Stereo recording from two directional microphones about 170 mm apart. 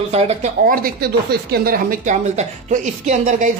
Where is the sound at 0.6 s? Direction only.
55° right (ahead or behind).